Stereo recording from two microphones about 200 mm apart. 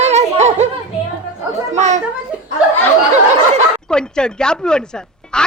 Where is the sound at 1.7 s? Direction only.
35° right (ahead or behind).